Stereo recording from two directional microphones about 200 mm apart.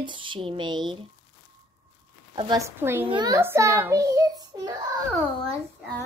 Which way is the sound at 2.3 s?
20° right (ahead or behind).